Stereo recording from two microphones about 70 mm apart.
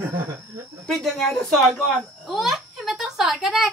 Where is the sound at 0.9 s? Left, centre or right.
Centre.